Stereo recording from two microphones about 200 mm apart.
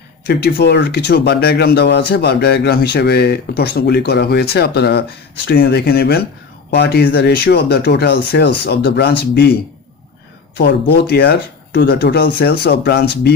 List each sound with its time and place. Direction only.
0.3 s speech: 50° left (ahead or behind)
10.6 s speech: 55° left (ahead or behind)